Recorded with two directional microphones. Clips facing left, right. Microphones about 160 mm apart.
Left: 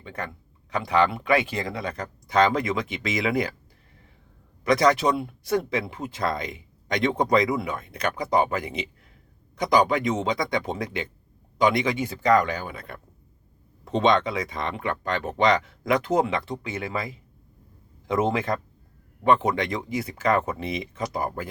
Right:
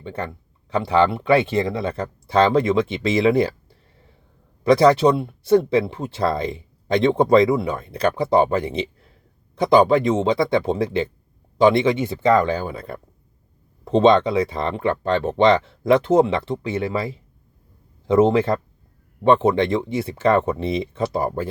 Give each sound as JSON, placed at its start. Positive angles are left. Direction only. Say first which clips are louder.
{"t": 0.0, "sound": "speech", "louder": "right 6 dB", "side_deg": -30}
{"t": 4.6, "sound": "speech", "louder": "right 6 dB", "side_deg": -30}